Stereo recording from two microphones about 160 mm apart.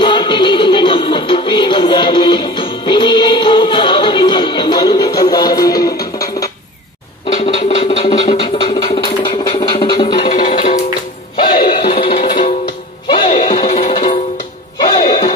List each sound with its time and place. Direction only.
0.0 s music: 30° left (ahead or behind)
7.3 s a sound: 40° left (ahead or behind)
10.3 s music: 35° left (ahead or behind)